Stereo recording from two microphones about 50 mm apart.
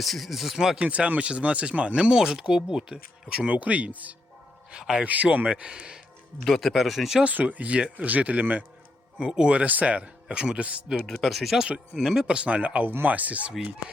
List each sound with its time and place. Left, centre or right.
0.0 s speech: centre
0.8 s a man's voice: right
4.7 s speech: centre
5.0 s a man's voice: right
5.5 s speech: centre
6.4 s speech: centre
7.3 s a man's voice: right
9.1 s a man's voice: centre
11.0 s speech: centre
12.3 s a man's voice: right